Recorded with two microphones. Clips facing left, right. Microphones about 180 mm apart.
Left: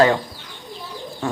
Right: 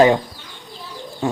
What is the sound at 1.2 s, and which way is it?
Speech, 20° right (ahead or behind).